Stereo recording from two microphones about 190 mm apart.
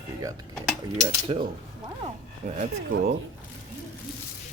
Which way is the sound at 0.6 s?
Centre (ahead or behind).